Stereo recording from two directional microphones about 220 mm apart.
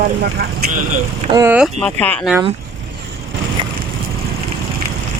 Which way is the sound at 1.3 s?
10° right (ahead or behind).